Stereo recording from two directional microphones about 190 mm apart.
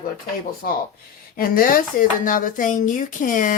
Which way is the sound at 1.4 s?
45° left (ahead or behind).